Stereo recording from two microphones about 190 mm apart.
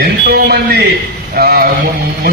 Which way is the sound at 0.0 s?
55° right (ahead or behind).